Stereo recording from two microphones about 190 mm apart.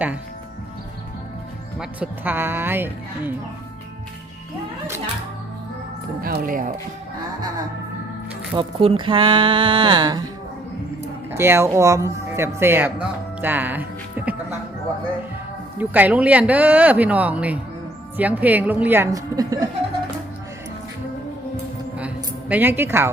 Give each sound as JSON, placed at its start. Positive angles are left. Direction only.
{"t": 1.8, "sound": "speech", "side_deg": -10}
{"t": 6.2, "sound": "speech", "side_deg": -50}
{"t": 8.5, "sound": "speech", "side_deg": -25}
{"t": 11.3, "sound": "speech", "side_deg": -10}
{"t": 15.8, "sound": "speech", "side_deg": -10}
{"t": 21.9, "sound": "music", "side_deg": -5}